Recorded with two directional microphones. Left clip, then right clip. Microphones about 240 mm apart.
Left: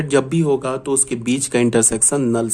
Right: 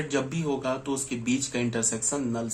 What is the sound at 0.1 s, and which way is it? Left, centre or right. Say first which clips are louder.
Speech: left 14 dB; left.